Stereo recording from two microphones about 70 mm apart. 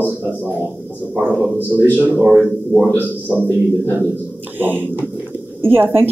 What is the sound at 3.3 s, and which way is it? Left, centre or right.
Speech, right.